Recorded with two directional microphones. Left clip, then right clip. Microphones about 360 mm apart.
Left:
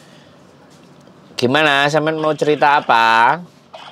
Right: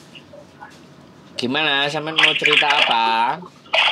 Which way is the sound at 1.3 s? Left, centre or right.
Left.